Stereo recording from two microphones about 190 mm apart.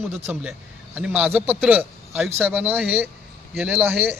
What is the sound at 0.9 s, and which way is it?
A man's voice, 5° right (ahead or behind).